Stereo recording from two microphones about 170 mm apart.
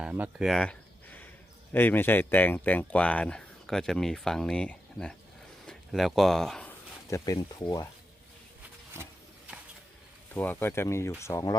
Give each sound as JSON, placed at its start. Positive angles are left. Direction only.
{"t": 0.0, "sound": "a sound", "side_deg": -5}
{"t": 1.7, "sound": "speech", "side_deg": 10}
{"t": 7.1, "sound": "speech", "side_deg": 20}
{"t": 10.3, "sound": "speech", "side_deg": 10}